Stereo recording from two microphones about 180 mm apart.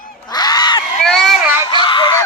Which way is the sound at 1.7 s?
25° left (ahead or behind).